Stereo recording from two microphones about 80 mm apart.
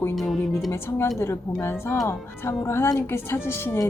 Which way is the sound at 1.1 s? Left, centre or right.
Left.